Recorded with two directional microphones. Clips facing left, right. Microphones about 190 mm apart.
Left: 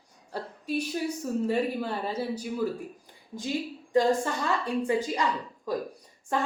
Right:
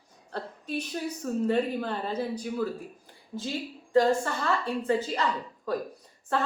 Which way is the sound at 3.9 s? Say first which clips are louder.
Right 1 dB; 15° left (ahead or behind).